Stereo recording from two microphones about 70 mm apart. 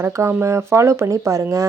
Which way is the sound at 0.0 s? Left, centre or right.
Right.